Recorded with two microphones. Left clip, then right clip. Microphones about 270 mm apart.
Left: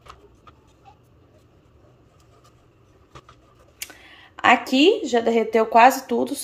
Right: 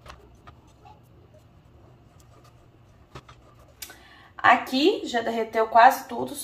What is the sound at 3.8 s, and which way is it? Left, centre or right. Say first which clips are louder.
Speech: left 5 dB; left.